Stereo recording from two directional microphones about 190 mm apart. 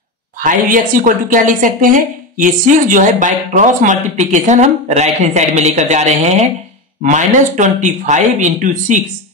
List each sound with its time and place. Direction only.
0.4 s a woman's voice: 45° right (ahead or behind)